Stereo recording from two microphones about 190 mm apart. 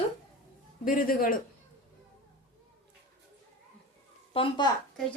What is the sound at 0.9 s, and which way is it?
Speech, 50° left (ahead or behind).